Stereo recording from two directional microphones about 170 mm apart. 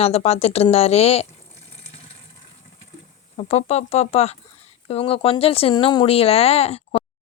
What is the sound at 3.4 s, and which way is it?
Speech, 40° left (ahead or behind).